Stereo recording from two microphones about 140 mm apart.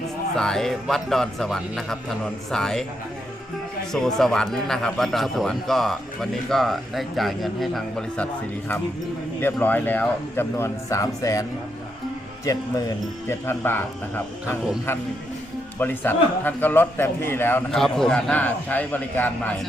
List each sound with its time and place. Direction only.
0.3 s a man's voice: 5° left (ahead or behind)
3.9 s a man's voice: 5° left (ahead or behind); by 11.4 s 25° left (ahead or behind)
12.5 s speech: 25° left (ahead or behind)
14.9 s speech: 15° left (ahead or behind)
17.7 s speech: 5° left (ahead or behind)